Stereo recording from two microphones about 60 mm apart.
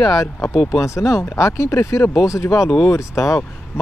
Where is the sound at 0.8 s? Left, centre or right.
Left.